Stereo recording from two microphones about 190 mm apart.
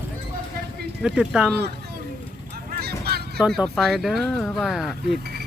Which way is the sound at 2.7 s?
55° right (ahead or behind).